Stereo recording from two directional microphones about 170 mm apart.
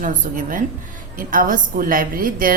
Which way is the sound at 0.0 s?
50° right (ahead or behind).